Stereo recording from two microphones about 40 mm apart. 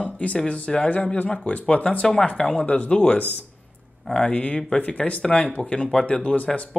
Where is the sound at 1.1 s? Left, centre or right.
Left.